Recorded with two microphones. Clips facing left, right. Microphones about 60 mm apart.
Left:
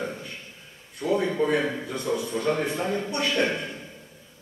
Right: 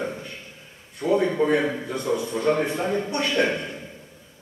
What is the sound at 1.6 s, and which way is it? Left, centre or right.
A man's voice, centre.